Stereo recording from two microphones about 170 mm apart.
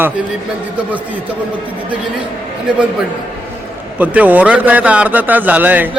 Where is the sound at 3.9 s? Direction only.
10° right (ahead or behind).